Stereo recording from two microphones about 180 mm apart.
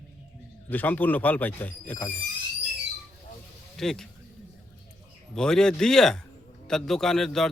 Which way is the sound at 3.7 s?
Centre (ahead or behind).